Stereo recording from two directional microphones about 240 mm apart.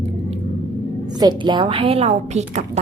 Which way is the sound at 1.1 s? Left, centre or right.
Centre.